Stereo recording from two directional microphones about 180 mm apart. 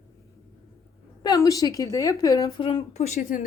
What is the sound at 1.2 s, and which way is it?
A woman's voice, 20° left (ahead or behind).